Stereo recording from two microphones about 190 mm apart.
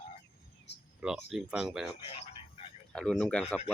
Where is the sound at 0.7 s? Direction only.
65° left (ahead or behind).